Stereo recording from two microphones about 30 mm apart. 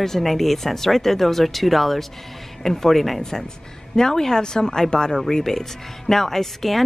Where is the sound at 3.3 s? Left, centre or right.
Left.